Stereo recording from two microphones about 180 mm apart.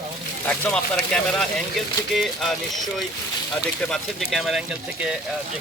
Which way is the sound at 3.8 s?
Centre (ahead or behind).